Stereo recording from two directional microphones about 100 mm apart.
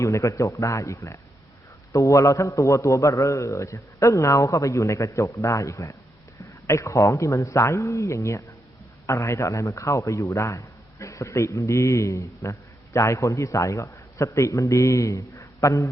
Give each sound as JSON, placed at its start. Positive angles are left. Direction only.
{"t": 0.0, "sound": "a man's voice", "side_deg": 35}